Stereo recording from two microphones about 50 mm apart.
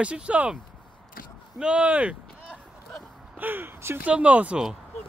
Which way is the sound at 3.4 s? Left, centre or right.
Right.